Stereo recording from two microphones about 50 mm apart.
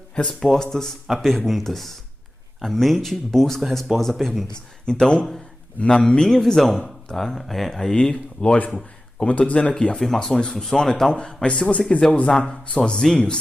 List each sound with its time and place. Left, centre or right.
0.3 s a man's voice: centre
4.8 s a man's voice: centre
9.9 s a man's voice: centre